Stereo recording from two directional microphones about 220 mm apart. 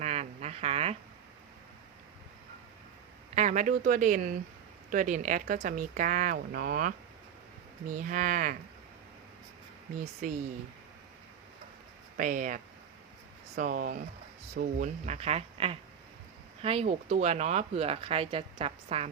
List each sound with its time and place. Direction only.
0.0 s a sound: 30° right (ahead or behind)
3.3 s speech: 30° right (ahead or behind)
12.1 s speech: 35° right (ahead or behind)
13.6 s speech: 35° right (ahead or behind)